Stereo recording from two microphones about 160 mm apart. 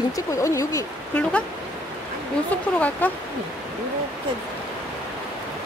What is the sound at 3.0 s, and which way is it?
Speech, 10° left (ahead or behind).